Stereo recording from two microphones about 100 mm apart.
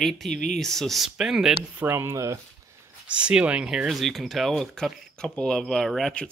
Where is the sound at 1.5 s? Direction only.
20° right (ahead or behind).